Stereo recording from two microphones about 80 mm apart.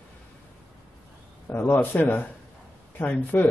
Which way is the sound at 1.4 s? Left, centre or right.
Left.